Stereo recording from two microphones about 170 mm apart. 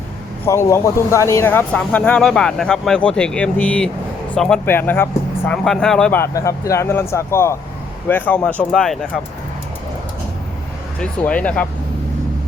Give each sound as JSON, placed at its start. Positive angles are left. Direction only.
{"t": 0.4, "sound": "speech", "side_deg": 15}
{"t": 11.0, "sound": "speech", "side_deg": 10}